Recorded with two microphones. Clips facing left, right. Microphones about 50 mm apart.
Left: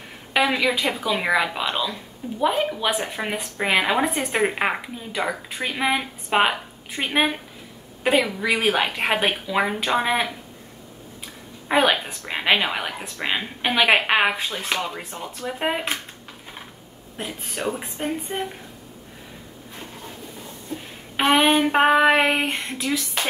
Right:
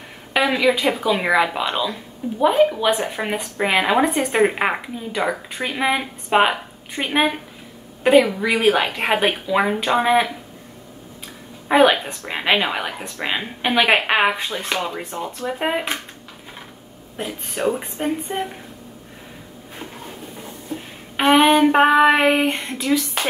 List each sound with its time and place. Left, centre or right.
0.3 s speech: centre
11.7 s speech: centre
17.2 s speech: centre
20.7 s a sound: right
21.2 s speech: centre